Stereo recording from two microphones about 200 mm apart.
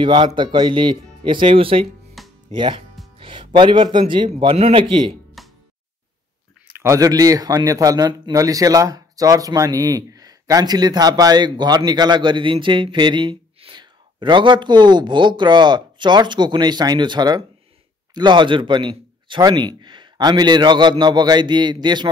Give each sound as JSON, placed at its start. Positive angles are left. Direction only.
{"t": 0.0, "sound": "speech", "side_deg": -25}
{"t": 2.2, "sound": "music", "side_deg": 0}
{"t": 2.5, "sound": "speech", "side_deg": -25}
{"t": 5.4, "sound": "music", "side_deg": 0}
{"t": 6.8, "sound": "speech", "side_deg": -15}